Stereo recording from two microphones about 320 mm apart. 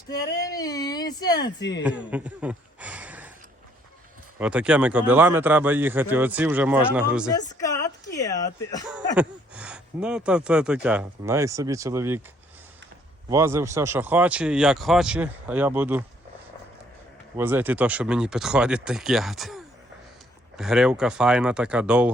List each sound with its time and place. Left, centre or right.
0.1 s speech: left
0.4 s speech: centre
1.8 s a sound: centre
4.4 s speech: centre
7.6 s a sound: centre
9.1 s speech: centre
13.3 s speech: centre
17.3 s speech: centre